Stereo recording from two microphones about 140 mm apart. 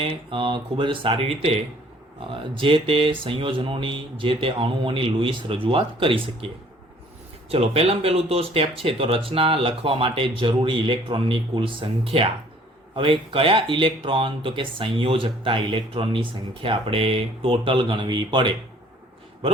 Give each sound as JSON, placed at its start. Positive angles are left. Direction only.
{"t": 0.0, "sound": "speech", "side_deg": -40}
{"t": 7.5, "sound": "speech", "side_deg": -45}